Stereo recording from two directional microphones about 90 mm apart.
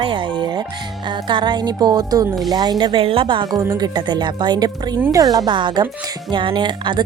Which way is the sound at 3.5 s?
45° right (ahead or behind).